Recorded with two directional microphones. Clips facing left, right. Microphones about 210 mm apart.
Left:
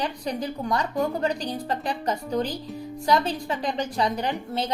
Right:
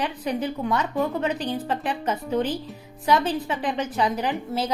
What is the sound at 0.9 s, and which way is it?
A woman's voice, centre (ahead or behind).